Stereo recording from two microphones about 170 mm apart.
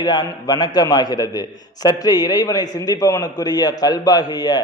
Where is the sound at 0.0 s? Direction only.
25° left (ahead or behind).